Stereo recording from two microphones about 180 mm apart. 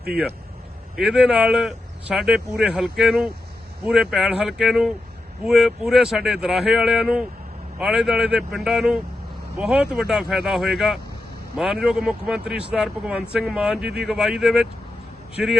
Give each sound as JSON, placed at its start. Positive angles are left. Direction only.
{"t": 0.9, "sound": "speech", "side_deg": -5}